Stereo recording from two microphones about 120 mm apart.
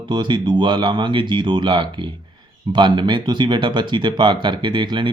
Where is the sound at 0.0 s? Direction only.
40° right (ahead or behind).